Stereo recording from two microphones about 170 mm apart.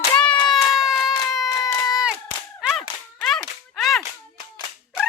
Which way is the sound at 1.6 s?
20° left (ahead or behind).